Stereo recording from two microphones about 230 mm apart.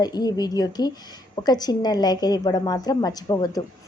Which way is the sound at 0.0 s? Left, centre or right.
Centre.